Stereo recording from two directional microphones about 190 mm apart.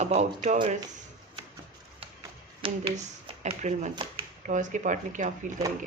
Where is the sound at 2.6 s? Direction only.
30° right (ahead or behind).